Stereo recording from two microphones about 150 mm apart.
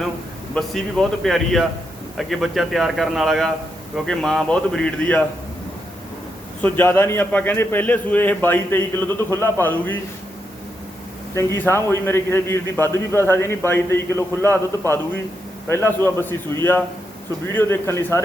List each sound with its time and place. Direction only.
0.5 s speech: centre (ahead or behind)
6.6 s a man's voice: 15° left (ahead or behind)
11.3 s a man's voice: 15° left (ahead or behind)
17.5 s a man's voice: 15° left (ahead or behind)